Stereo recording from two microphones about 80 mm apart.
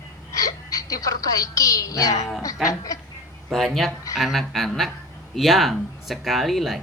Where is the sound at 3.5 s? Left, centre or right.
Centre.